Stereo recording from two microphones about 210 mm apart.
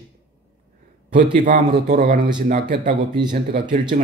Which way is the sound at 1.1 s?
35° right (ahead or behind).